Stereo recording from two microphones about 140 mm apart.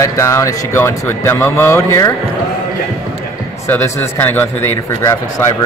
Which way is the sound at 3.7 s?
15° left (ahead or behind).